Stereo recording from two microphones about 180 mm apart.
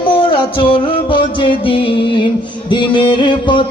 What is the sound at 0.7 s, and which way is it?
Music, 25° left (ahead or behind).